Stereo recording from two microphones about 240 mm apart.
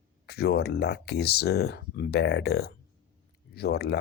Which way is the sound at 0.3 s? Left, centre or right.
Left.